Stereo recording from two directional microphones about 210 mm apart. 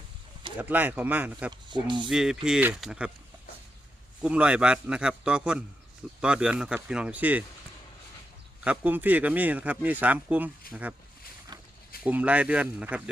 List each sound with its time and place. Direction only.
0.6 s speech: 10° right (ahead or behind)
1.5 s speech: 20° right (ahead or behind)
2.0 s a man's voice: 5° right (ahead or behind)
4.2 s a man's voice: 5° right (ahead or behind)
8.6 s speech: 5° right (ahead or behind)
12.0 s a man's voice: 5° right (ahead or behind)